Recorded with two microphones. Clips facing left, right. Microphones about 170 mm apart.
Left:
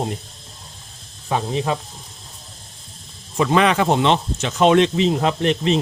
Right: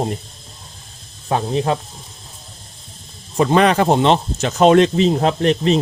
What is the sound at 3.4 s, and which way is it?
Speech, 40° right (ahead or behind).